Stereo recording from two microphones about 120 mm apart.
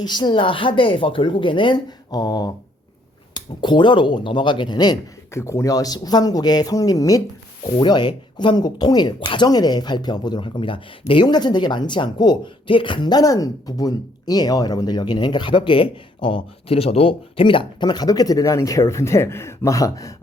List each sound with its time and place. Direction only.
0.0 s a woman's voice: 40° left (ahead or behind)
5.3 s speech: 25° left (ahead or behind)